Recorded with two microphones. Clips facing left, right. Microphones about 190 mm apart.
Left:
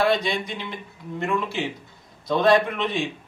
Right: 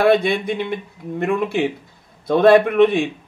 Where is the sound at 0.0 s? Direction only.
55° right (ahead or behind).